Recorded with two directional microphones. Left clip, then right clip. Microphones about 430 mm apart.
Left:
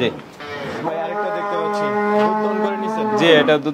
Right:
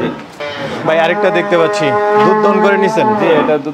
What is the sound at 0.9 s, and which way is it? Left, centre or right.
Speech, right.